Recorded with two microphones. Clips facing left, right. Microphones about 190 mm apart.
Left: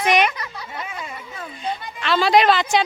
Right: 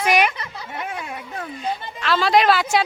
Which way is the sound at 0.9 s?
60° right (ahead or behind).